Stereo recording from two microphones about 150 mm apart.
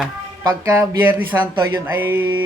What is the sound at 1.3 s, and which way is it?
A man's voice, 20° right (ahead or behind).